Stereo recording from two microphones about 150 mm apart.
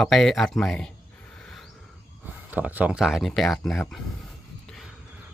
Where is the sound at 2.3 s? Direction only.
10° right (ahead or behind).